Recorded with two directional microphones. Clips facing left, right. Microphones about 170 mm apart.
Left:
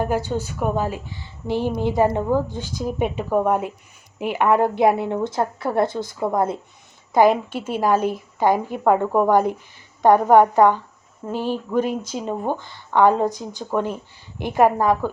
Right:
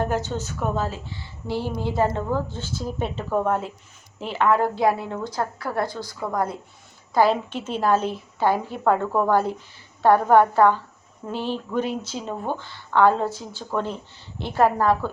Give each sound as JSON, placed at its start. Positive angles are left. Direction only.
{"t": 0.0, "sound": "a woman's voice", "side_deg": 10}